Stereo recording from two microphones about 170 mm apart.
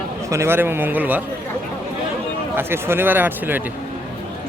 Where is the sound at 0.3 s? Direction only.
15° right (ahead or behind).